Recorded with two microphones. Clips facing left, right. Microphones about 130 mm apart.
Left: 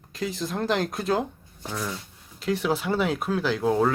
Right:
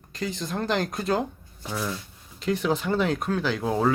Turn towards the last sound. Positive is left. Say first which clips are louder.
# left 2 dB
turn(degrees=0)  # may be behind; listen again after turning